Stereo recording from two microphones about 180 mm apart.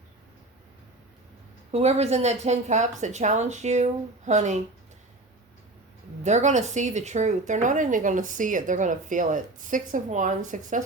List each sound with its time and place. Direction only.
1.7 s a woman's voice: 35° right (ahead or behind)
6.2 s speech: 40° right (ahead or behind)